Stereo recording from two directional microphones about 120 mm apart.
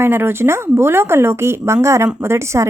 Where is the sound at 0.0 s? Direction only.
20° right (ahead or behind).